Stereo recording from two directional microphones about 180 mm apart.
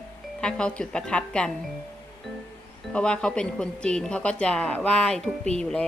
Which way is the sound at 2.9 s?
5° left (ahead or behind).